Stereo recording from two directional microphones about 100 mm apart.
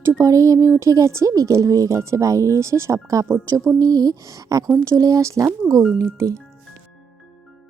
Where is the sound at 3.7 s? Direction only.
40° right (ahead or behind).